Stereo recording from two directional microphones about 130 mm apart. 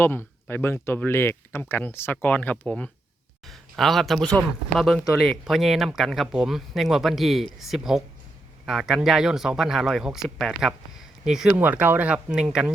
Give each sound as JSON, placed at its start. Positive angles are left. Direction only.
{"t": 0.0, "sound": "speech", "side_deg": 15}
{"t": 3.4, "sound": "a sound", "side_deg": 0}
{"t": 5.1, "sound": "speech", "side_deg": 0}